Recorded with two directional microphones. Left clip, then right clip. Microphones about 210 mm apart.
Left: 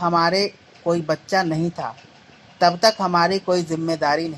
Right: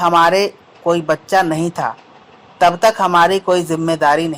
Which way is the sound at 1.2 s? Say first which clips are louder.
Right 7 dB; 15° right (ahead or behind).